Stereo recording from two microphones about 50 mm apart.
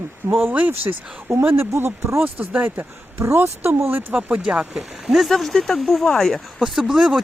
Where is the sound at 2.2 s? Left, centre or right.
Right.